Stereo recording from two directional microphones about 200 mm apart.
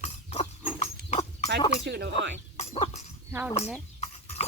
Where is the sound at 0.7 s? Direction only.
30° left (ahead or behind).